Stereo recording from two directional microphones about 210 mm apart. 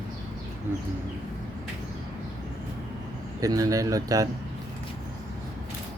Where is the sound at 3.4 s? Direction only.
15° right (ahead or behind).